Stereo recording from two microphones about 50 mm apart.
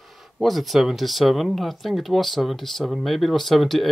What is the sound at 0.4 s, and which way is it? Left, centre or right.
Speech, centre.